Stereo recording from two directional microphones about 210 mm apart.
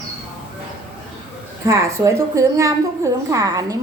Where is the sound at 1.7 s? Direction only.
15° right (ahead or behind).